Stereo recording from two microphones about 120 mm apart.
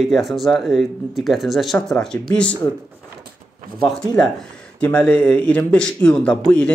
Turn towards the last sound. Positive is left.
turn(degrees=5)  # may be behind; listen again after turning